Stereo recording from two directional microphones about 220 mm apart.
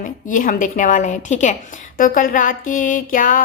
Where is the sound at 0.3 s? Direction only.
35° left (ahead or behind).